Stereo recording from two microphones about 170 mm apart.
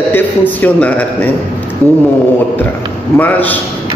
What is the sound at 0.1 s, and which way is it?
A man's voice, 10° left (ahead or behind).